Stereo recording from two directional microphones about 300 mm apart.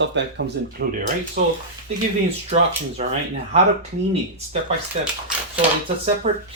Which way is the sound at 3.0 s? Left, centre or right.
Right.